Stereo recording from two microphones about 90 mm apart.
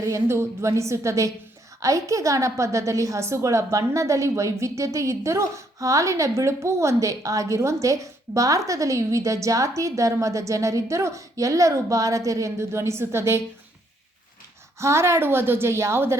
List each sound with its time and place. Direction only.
0.0 s a woman's voice: 35° right (ahead or behind)
14.8 s a woman's voice: 30° right (ahead or behind)